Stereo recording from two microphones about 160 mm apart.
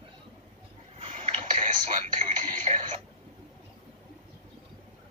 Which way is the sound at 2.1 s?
45° right (ahead or behind).